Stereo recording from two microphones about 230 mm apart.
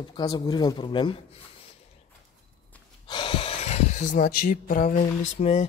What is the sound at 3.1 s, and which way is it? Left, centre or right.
Speech, left.